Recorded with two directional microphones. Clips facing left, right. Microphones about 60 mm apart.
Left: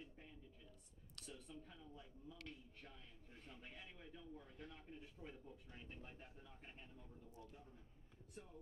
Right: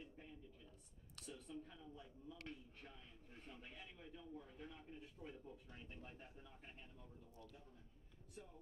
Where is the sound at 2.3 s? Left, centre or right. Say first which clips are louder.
Right 2 dB; right.